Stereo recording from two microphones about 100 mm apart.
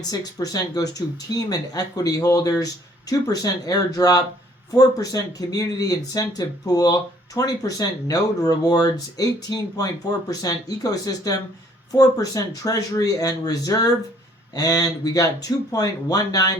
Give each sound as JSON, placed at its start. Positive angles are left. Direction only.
{"t": 0.1, "sound": "speech", "side_deg": 40}